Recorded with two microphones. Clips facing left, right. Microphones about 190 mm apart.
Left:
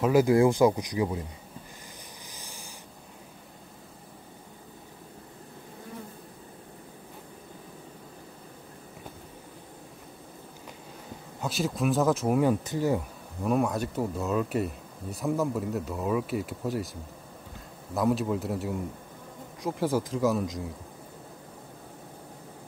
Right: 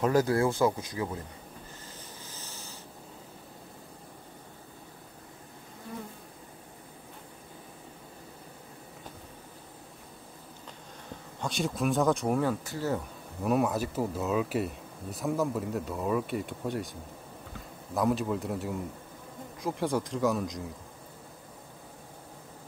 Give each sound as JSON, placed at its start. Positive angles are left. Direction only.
{"t": 0.0, "sound": "speech", "side_deg": 10}
{"t": 2.3, "sound": "rub", "side_deg": 15}
{"t": 11.4, "sound": "speech", "side_deg": 0}
{"t": 12.4, "sound": "speech", "side_deg": 15}
{"t": 13.4, "sound": "speech", "side_deg": 0}
{"t": 17.9, "sound": "speech", "side_deg": 0}